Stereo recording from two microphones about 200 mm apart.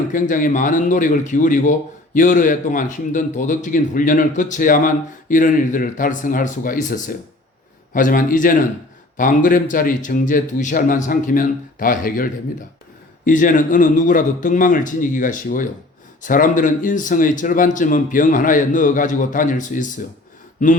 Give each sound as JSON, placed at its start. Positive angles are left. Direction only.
{"t": 0.1, "sound": "a man's voice", "side_deg": 40}